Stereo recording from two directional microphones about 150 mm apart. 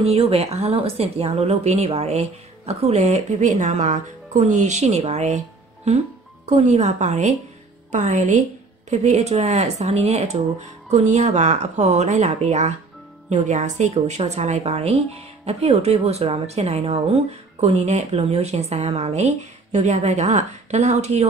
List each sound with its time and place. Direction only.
0.0 s speech: 40° right (ahead or behind)
6.4 s speech: 45° right (ahead or behind)